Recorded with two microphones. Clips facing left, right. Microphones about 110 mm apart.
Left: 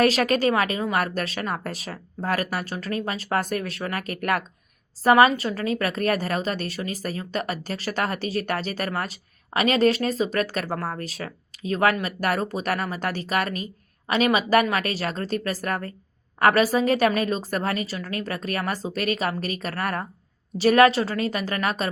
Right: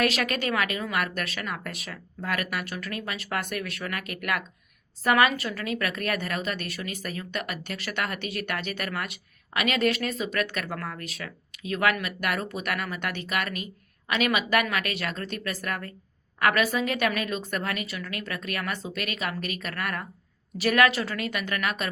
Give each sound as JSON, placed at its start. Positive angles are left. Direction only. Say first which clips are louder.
{"t": 0.0, "sound": "a woman's voice", "louder": "left 6 dB", "side_deg": 35}